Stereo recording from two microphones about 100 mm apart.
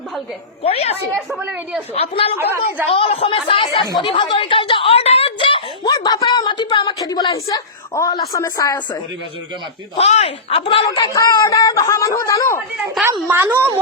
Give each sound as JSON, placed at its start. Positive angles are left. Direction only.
{"t": 0.6, "sound": "a woman's voice", "side_deg": 80}
{"t": 1.5, "sound": "a woman's voice", "side_deg": -10}
{"t": 1.9, "sound": "speech", "side_deg": 75}
{"t": 2.4, "sound": "a woman's voice", "side_deg": -20}
{"t": 2.9, "sound": "speech", "side_deg": 75}
{"t": 3.9, "sound": "a sound", "side_deg": 55}
{"t": 5.8, "sound": "a sound", "side_deg": 40}
{"t": 7.0, "sound": "a woman's voice", "side_deg": 40}
{"t": 9.9, "sound": "speech", "side_deg": 80}
{"t": 10.9, "sound": "speech", "side_deg": 40}
{"t": 11.4, "sound": "a woman's voice", "side_deg": 35}
{"t": 13.2, "sound": "a woman's voice", "side_deg": -20}